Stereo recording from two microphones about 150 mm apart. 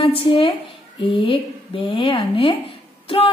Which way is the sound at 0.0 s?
35° left (ahead or behind).